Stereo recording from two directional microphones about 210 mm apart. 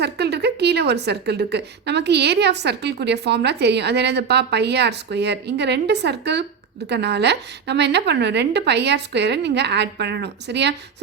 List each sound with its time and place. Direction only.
0.0 s a woman's voice: 50° right (ahead or behind)